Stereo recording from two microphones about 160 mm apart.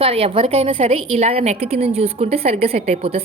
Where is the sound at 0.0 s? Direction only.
35° right (ahead or behind).